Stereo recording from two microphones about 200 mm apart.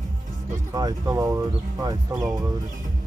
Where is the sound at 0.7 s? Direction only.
20° right (ahead or behind).